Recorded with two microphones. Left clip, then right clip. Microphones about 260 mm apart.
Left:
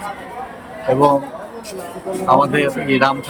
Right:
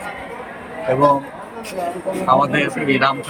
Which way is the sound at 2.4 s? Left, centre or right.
Centre.